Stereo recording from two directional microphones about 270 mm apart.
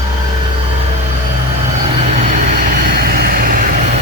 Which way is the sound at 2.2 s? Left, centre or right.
Right.